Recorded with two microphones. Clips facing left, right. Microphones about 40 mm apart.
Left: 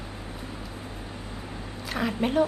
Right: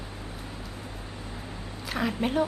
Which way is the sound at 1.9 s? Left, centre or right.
Centre.